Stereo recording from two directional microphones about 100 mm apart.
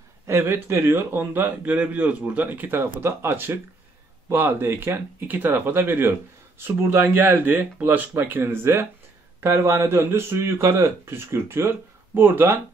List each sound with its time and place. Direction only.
0.3 s speech: 25° right (ahead or behind)